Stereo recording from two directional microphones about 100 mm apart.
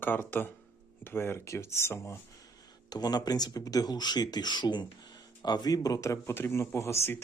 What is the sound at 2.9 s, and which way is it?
Speech, 45° left (ahead or behind).